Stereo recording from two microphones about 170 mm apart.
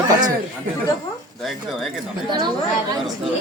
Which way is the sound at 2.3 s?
25° right (ahead or behind).